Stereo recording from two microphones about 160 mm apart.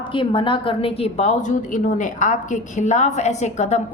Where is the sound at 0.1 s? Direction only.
30° left (ahead or behind).